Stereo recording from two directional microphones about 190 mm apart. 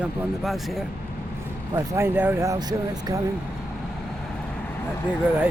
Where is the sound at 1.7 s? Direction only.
15° right (ahead or behind).